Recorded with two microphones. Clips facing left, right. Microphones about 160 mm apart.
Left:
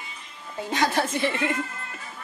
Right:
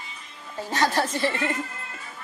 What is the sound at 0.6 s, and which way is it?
Speech, 15° left (ahead or behind).